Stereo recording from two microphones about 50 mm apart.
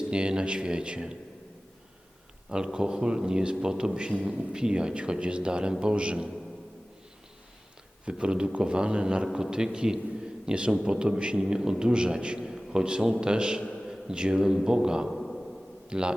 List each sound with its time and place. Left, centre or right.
0.1 s a man's voice: centre
2.7 s a man's voice: centre
8.0 s a man's voice: centre
15.0 s a sound: centre
15.9 s a man's voice: centre